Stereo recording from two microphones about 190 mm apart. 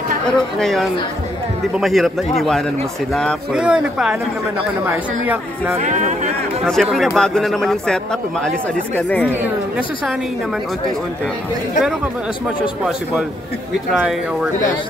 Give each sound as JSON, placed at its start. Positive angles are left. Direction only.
{"t": 0.6, "sound": "speech", "side_deg": 0}
{"t": 5.2, "sound": "speech", "side_deg": -10}
{"t": 5.8, "sound": "speech", "side_deg": -40}
{"t": 6.6, "sound": "speech", "side_deg": 0}
{"t": 13.9, "sound": "speech", "side_deg": 0}